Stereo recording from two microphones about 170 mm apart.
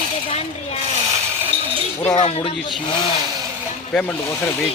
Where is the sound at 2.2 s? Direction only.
35° left (ahead or behind).